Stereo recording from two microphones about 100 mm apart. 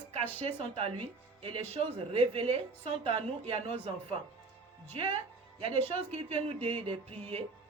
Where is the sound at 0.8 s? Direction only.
70° right (ahead or behind).